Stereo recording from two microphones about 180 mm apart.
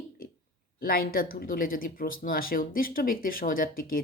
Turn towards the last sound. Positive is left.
turn(degrees=50)  # may be behind; listen again after turning